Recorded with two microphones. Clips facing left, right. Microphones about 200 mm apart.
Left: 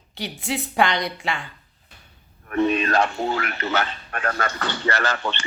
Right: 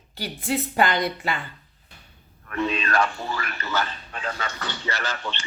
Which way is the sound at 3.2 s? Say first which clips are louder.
Left 6 dB; 60° left (ahead or behind).